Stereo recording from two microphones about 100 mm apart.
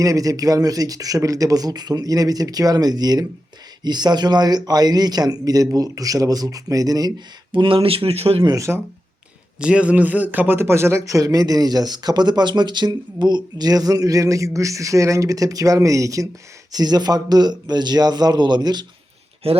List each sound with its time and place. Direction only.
0.0 s a man's voice: 35° right (ahead or behind)
7.5 s speech: 60° right (ahead or behind); by 8.4 s 90° right
8.4 s a man's voice: 30° right (ahead or behind)
9.6 s a man's voice: 10° right (ahead or behind); by 18.9 s 45° right (ahead or behind)
19.4 s speech: 75° right (ahead or behind)